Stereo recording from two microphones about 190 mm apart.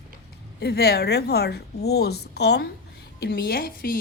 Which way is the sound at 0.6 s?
55° left (ahead or behind).